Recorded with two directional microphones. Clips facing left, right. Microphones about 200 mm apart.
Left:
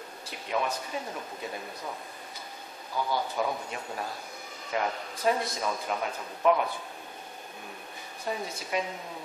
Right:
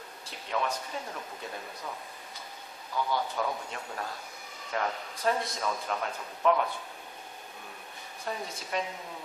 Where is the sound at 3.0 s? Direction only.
10° left (ahead or behind).